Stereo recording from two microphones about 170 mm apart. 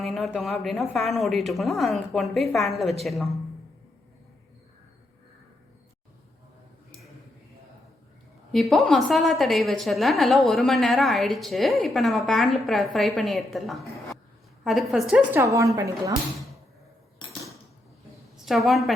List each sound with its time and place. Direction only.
0.0 s a woman's voice: centre (ahead or behind)
8.5 s a woman's voice: centre (ahead or behind)
15.1 s a woman's voice: 15° right (ahead or behind)
17.2 s a sound: 25° left (ahead or behind)
18.4 s a woman's voice: centre (ahead or behind)